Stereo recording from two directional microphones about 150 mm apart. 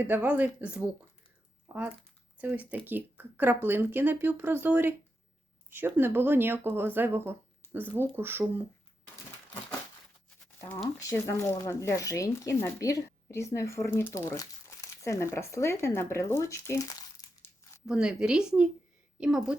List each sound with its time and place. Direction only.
0.0 s speech: 10° right (ahead or behind)
11.0 s speech: 20° left (ahead or behind)
17.8 s a woman's voice: 5° right (ahead or behind)